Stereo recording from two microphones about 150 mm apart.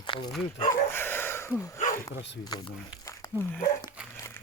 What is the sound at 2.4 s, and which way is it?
Speech, 25° left (ahead or behind).